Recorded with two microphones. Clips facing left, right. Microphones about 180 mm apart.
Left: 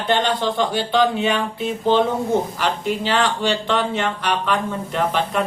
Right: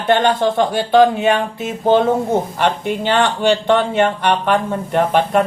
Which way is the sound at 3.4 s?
55° right (ahead or behind).